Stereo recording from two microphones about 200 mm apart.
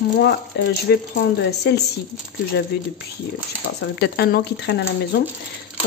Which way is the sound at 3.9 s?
55° left (ahead or behind).